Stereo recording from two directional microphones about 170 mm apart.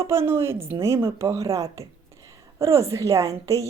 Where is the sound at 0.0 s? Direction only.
15° right (ahead or behind).